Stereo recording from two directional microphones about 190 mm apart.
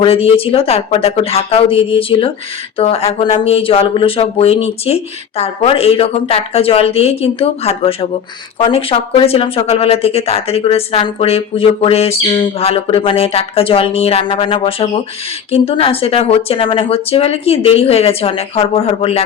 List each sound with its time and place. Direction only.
0.0 s speech: 30° left (ahead or behind)